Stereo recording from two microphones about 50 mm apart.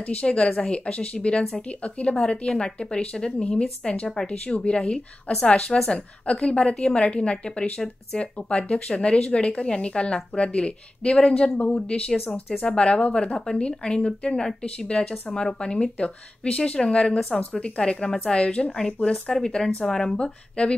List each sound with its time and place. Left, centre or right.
0.0 s speech: left
19.2 s speech: centre